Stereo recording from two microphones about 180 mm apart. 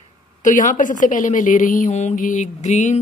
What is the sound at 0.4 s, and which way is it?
A woman's voice, 45° left (ahead or behind).